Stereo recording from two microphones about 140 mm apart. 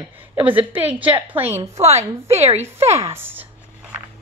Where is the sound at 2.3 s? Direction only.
50° right (ahead or behind).